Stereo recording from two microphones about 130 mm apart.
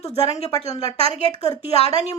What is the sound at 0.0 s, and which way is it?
Speech, 55° left (ahead or behind).